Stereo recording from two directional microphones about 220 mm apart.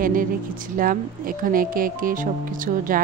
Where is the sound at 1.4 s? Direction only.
40° right (ahead or behind).